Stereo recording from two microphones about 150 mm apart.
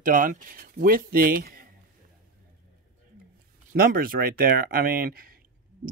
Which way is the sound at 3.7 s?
80° right.